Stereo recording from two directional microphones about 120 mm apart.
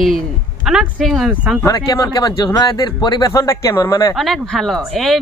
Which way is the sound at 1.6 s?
30° left (ahead or behind).